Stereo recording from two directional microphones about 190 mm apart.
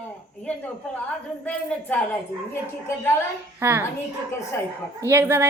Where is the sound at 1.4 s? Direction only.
10° left (ahead or behind).